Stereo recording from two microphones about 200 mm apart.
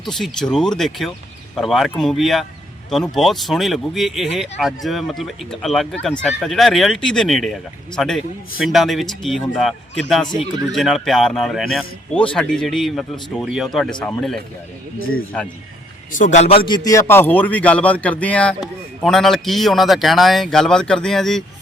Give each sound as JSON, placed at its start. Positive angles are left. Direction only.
{"t": 0.0, "sound": "speech", "side_deg": 0}
{"t": 14.9, "sound": "speech", "side_deg": 90}
{"t": 16.1, "sound": "speech", "side_deg": 40}